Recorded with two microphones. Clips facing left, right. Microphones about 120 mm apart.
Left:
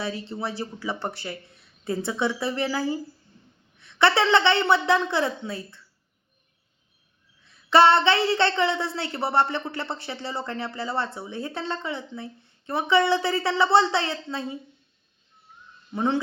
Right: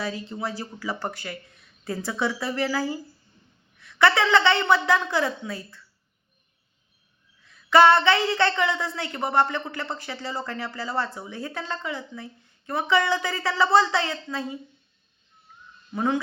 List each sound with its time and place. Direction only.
0.0 s a woman's voice: 30° left (ahead or behind)
7.7 s speech: 25° left (ahead or behind)
16.0 s speech: 25° left (ahead or behind)